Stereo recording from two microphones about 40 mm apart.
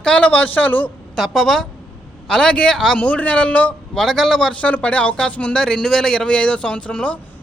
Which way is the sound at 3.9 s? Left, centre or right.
Centre.